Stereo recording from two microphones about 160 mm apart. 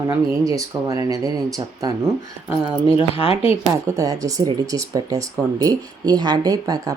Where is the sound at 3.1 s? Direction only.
35° left (ahead or behind).